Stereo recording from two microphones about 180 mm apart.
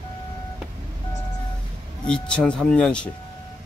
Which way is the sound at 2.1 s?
5° left (ahead or behind).